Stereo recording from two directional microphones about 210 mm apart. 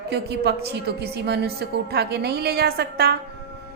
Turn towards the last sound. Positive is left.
turn(degrees=-50)  # may be behind; listen again after turning